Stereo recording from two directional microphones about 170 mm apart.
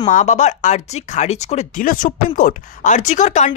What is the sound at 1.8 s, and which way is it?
Speech, 55° left (ahead or behind).